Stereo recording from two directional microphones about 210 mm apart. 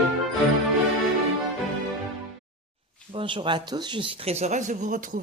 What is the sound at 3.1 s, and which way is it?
Speech, 25° right (ahead or behind).